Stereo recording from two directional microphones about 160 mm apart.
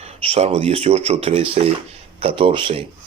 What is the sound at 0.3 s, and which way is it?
Speech, 40° right (ahead or behind).